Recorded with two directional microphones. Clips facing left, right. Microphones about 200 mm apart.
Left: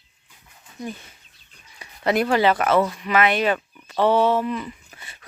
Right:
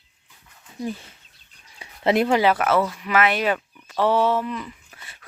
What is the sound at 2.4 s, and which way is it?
Speech, 5° right (ahead or behind).